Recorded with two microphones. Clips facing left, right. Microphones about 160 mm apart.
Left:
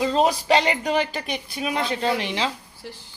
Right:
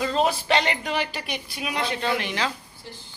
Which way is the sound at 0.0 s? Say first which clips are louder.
Left 3 dB; 35° left (ahead or behind).